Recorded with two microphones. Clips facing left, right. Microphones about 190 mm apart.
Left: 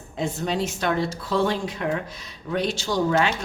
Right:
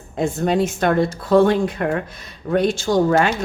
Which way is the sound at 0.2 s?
50° right (ahead or behind).